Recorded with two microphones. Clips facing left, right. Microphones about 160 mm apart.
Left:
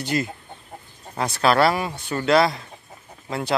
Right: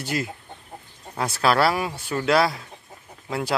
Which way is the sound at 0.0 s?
5° right (ahead or behind).